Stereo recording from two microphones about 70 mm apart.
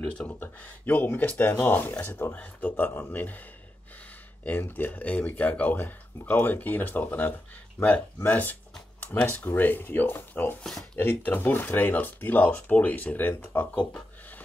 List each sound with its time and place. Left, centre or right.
0.0 s speech: centre
10.6 s speech: centre
11.0 s speech: left